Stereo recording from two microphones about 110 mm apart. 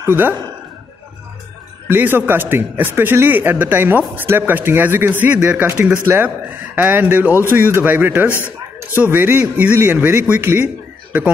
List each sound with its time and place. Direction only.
0.0 s a man's voice: 15° right (ahead or behind)
1.9 s a man's voice: 20° right (ahead or behind)